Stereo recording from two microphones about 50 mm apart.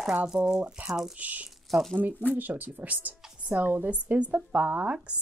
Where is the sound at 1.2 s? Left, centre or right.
Right.